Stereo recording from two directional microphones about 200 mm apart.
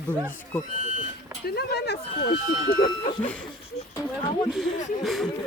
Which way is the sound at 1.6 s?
55° left (ahead or behind).